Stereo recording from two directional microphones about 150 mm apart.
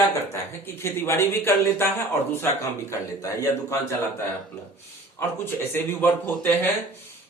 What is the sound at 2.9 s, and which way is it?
A man's voice, 20° left (ahead or behind).